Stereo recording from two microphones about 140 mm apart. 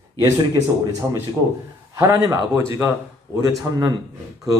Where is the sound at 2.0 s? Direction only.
25° right (ahead or behind).